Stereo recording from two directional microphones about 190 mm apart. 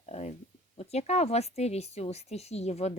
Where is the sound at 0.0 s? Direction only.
35° left (ahead or behind).